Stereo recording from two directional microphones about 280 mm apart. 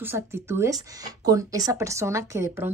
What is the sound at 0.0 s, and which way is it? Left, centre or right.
Speech, centre.